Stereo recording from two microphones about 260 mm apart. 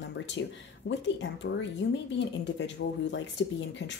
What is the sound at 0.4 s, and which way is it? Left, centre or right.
Speech, left.